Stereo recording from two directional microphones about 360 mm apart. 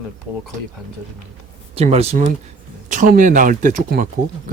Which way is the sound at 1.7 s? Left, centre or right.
Centre.